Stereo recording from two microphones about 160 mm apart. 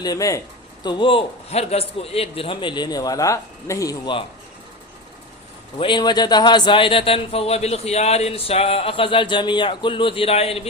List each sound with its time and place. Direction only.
0.0 s a man's voice: 20° left (ahead or behind)
5.8 s a man's voice: 30° left (ahead or behind)